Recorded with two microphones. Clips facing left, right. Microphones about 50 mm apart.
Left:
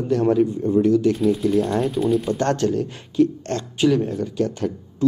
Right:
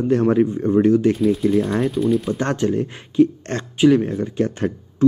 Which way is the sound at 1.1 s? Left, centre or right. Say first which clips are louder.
Right 1 dB; centre.